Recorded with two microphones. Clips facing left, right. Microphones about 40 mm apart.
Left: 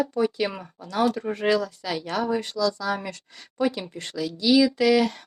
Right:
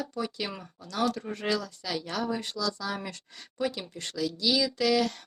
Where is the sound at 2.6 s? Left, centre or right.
Left.